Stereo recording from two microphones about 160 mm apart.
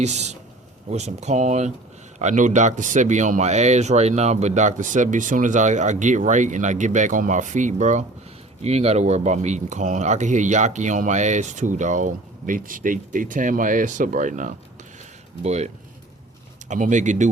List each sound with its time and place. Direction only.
0.0 s speech: 45° right (ahead or behind)